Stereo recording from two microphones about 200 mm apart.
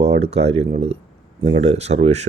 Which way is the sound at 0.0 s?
30° right (ahead or behind).